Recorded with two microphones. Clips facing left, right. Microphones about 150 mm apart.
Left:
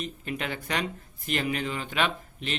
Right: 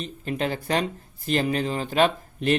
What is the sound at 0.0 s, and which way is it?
Speech, 35° right (ahead or behind).